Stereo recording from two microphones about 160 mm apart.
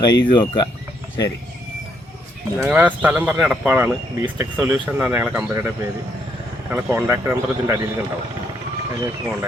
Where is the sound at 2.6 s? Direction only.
10° right (ahead or behind).